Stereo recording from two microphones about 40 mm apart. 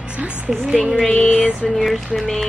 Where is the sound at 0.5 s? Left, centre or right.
Centre.